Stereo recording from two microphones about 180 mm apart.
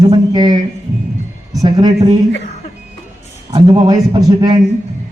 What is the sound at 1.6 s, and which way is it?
Speech, 20° right (ahead or behind).